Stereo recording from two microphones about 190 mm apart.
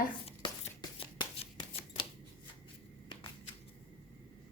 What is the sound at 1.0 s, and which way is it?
Shuffling cards, 25° left (ahead or behind).